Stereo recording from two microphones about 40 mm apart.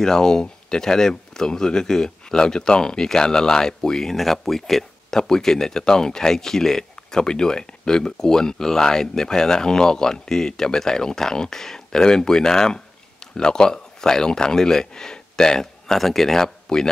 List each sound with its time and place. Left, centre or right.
0.0 s speech: centre